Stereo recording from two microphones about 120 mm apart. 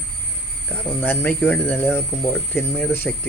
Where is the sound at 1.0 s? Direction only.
15° left (ahead or behind).